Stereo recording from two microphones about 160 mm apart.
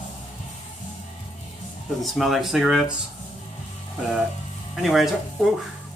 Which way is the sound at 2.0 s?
Centre (ahead or behind).